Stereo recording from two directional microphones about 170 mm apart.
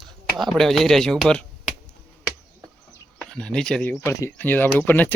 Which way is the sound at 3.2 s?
5° left (ahead or behind).